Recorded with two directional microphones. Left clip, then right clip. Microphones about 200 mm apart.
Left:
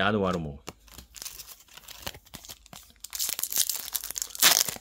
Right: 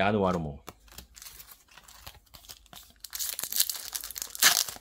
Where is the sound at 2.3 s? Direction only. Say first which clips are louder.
Left 3 dB; 20° left (ahead or behind).